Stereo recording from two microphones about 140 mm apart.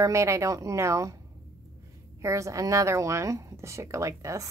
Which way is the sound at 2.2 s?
20° right (ahead or behind).